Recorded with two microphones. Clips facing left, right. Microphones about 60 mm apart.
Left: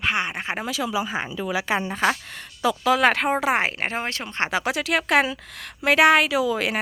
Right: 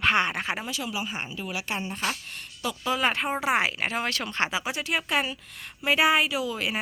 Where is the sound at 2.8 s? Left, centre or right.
Left.